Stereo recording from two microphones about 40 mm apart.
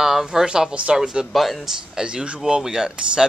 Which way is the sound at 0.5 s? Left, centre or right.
Centre.